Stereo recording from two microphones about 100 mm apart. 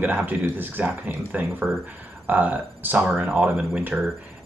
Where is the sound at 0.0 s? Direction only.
15° right (ahead or behind).